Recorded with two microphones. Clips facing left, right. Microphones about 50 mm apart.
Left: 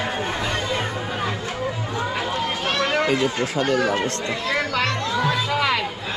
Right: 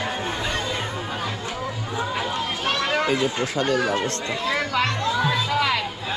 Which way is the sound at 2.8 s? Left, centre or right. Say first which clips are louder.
Left 3 dB; centre.